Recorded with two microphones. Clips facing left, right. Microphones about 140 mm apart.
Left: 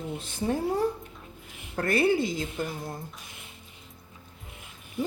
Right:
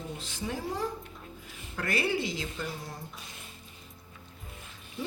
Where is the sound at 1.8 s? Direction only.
50° left (ahead or behind).